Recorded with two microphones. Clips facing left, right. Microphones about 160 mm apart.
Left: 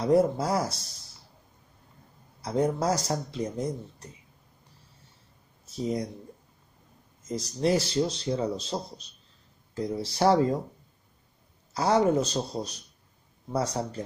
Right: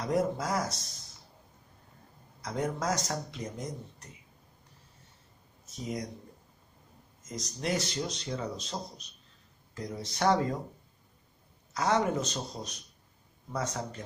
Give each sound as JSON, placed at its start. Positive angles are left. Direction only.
{"t": 0.0, "sound": "speech", "side_deg": 30}
{"t": 2.4, "sound": "speech", "side_deg": 30}
{"t": 5.7, "sound": "speech", "side_deg": 30}
{"t": 7.2, "sound": "speech", "side_deg": 30}
{"t": 11.7, "sound": "speech", "side_deg": 35}